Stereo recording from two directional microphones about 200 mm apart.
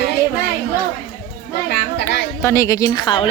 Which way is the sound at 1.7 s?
55° left (ahead or behind).